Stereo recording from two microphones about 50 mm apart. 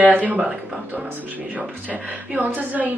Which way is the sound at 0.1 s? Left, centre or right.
Right.